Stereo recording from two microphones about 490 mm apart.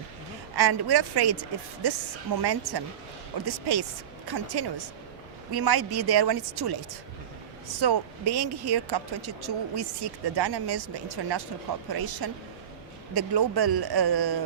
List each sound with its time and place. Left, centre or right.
0.5 s a woman's voice: right
7.8 s a woman's voice: right